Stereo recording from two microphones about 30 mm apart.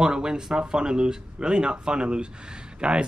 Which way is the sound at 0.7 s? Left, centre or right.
Right.